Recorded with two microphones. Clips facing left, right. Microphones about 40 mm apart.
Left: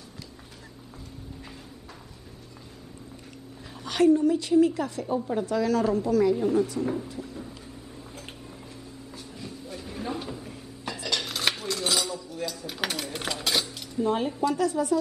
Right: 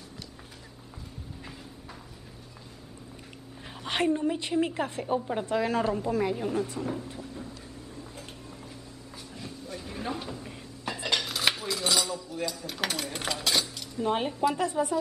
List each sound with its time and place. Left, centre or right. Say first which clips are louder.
3.8 s a woman's voice: left 6 dB; right
6.3 s a woman's voice: left 6 dB; centre
6.8 s speech: left 4 dB; centre
9.4 s a sound: even; centre
10.4 s a sound: even; centre
11.1 s cutlery: even; centre
14.0 s a woman's voice: left 1 dB; right